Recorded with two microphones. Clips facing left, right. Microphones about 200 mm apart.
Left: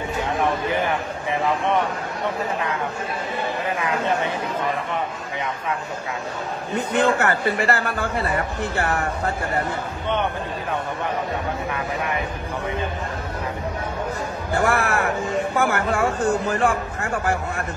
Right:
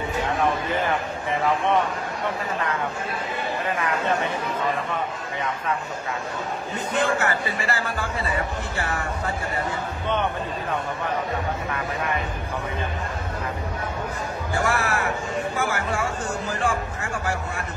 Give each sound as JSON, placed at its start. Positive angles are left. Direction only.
{"t": 7.0, "sound": "a man's voice", "side_deg": 60}
{"t": 14.5, "sound": "a man's voice", "side_deg": 60}